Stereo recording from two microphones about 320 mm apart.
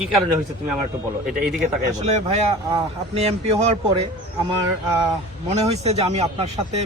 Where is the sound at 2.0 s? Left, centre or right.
Centre.